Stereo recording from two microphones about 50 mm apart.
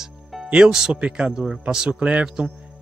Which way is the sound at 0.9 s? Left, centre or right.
Right.